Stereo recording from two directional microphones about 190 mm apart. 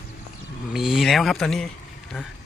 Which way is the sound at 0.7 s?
Centre (ahead or behind).